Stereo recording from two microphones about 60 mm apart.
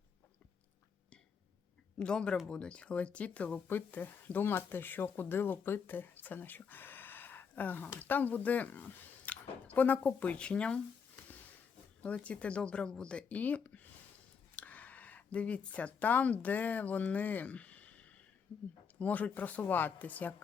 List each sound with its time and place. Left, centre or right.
2.0 s a man's voice: centre
11.2 s a sound: left
12.0 s speech: left